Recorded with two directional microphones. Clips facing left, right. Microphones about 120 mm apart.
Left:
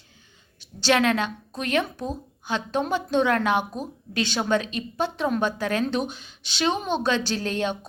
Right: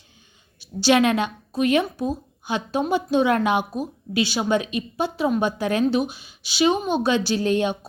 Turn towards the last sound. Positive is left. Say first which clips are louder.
# right 5 dB
turn(degrees=-15)  # may be behind; listen again after turning